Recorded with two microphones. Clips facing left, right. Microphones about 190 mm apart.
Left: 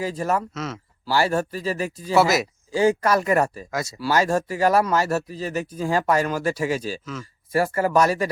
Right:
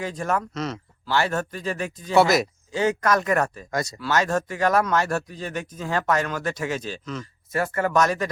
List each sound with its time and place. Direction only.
0.0 s speech: 5° left (ahead or behind)